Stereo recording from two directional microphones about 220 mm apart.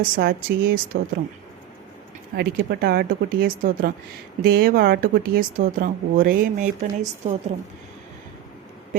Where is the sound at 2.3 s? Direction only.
45° right (ahead or behind).